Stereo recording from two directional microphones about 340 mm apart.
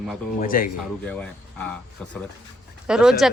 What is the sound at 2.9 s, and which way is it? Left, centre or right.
Speech, centre.